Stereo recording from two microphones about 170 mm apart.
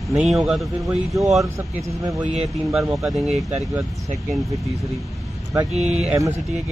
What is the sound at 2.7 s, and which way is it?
Speech, centre (ahead or behind).